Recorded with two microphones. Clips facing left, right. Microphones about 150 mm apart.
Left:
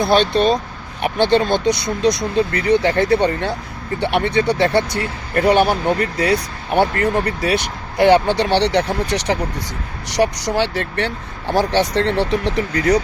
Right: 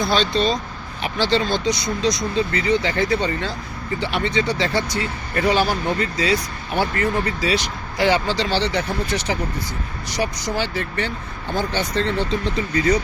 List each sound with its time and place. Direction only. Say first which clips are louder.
0.0 s speech: left 5 dB; 60° left (ahead or behind)